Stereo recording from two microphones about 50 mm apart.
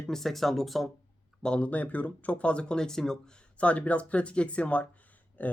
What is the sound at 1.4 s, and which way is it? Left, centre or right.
Speech, left.